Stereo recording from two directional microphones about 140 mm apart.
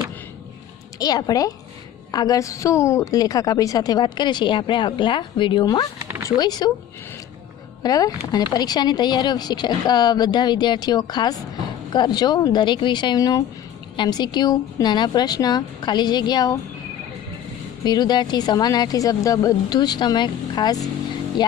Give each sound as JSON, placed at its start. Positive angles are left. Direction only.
{"t": 0.9, "sound": "a woman's voice", "side_deg": 30}
{"t": 7.8, "sound": "speech", "side_deg": 25}
{"t": 17.8, "sound": "a woman's voice", "side_deg": 30}